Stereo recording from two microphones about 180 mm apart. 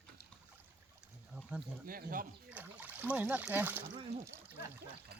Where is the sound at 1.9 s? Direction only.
50° right (ahead or behind).